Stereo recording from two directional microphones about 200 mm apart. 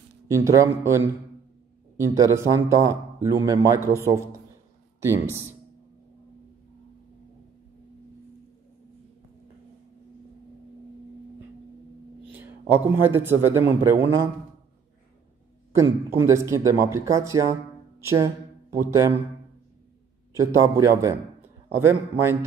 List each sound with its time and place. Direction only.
0.3 s speech: 15° right (ahead or behind)
12.3 s a man's voice: 10° right (ahead or behind)
15.7 s speech: 15° right (ahead or behind)
18.9 s speech: 15° right (ahead or behind)
20.3 s a man's voice: 15° right (ahead or behind)